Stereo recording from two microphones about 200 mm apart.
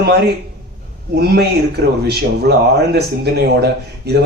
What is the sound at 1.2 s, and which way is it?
Speech, 55° right (ahead or behind).